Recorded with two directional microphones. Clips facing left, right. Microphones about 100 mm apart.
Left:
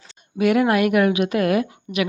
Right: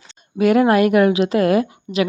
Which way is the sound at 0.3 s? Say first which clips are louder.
Right 4 dB; 35° right (ahead or behind).